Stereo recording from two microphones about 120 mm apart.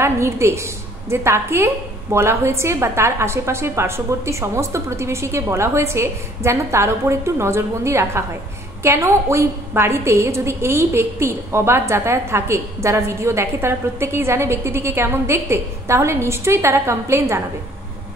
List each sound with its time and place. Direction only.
0.0 s a woman's voice: 20° right (ahead or behind)